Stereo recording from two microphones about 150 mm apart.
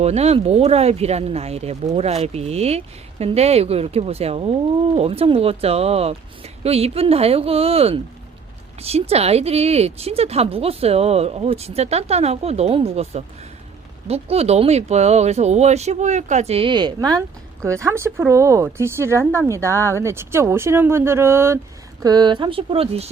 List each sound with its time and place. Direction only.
0.0 s speech: 45° right (ahead or behind); by 21.6 s 15° right (ahead or behind)
22.0 s speech: 30° right (ahead or behind)